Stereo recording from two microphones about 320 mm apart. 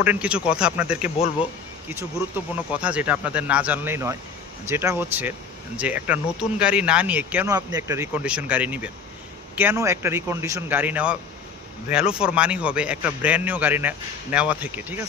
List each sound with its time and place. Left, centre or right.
0.0 s a man's voice: centre
1.1 s speech: centre
1.9 s a man's voice: centre